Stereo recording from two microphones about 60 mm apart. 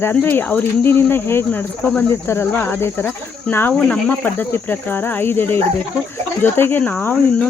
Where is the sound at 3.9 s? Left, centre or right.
Left.